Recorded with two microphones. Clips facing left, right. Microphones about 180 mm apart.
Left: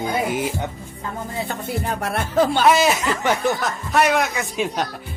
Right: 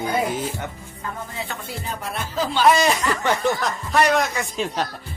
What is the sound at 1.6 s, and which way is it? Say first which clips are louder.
Music: left 6 dB; 60° left (ahead or behind).